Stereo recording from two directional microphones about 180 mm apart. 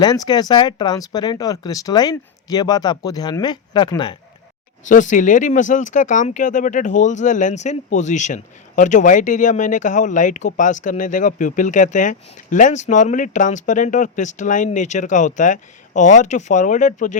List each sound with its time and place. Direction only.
0.0 s speech: 20° left (ahead or behind)
4.9 s speech: 45° left (ahead or behind)